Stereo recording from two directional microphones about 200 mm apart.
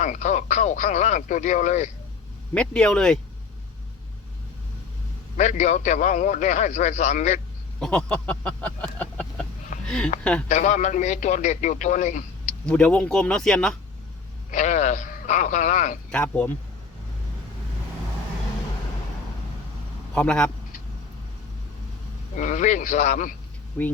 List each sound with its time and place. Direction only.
0.0 s a man's voice: 35° left (ahead or behind)
2.6 s speech: 5° left (ahead or behind)
5.4 s a man's voice: 35° left (ahead or behind)
7.8 s speech: 5° left (ahead or behind)
10.5 s a man's voice: 35° left (ahead or behind)
12.6 s speech: 5° left (ahead or behind)
14.5 s a man's voice: 35° left (ahead or behind)
16.0 s speech: 5° left (ahead or behind)
20.1 s speech: 5° left (ahead or behind)
22.4 s a man's voice: 40° left (ahead or behind)